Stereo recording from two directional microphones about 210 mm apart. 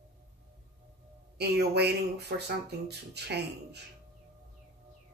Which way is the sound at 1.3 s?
50° right (ahead or behind).